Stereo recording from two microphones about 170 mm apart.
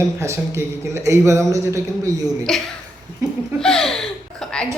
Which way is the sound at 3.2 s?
20° right (ahead or behind).